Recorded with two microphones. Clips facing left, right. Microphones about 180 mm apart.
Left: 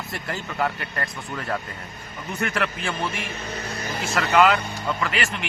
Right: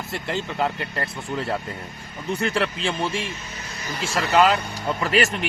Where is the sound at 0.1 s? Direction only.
25° right (ahead or behind).